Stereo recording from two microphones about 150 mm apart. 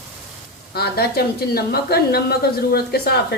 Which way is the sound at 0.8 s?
90° left.